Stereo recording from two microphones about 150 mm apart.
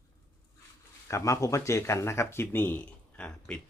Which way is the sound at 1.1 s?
20° left (ahead or behind).